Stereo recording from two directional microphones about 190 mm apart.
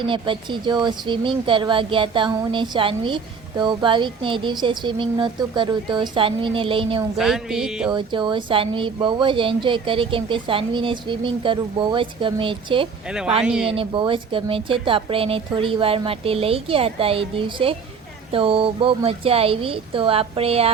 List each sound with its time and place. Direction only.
0.0 s speech: 25° right (ahead or behind)
7.2 s speech: centre (ahead or behind)
7.9 s speech: 25° right (ahead or behind)
13.1 s speech: 5° right (ahead or behind)
13.7 s speech: 25° right (ahead or behind)